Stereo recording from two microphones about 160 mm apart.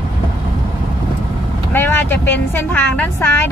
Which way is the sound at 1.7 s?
15° left (ahead or behind).